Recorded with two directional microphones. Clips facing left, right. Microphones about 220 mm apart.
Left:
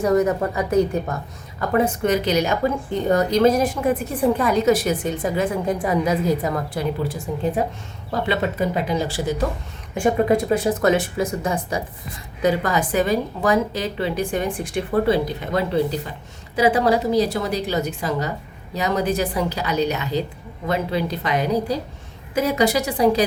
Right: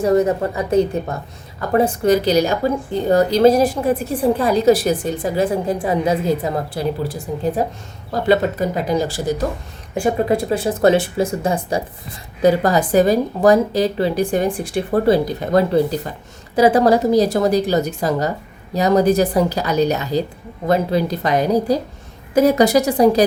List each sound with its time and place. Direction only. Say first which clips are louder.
0.0 s a woman's voice: right 3 dB; 30° right (ahead or behind)
10.0 s a woman's voice: even; 30° right (ahead or behind)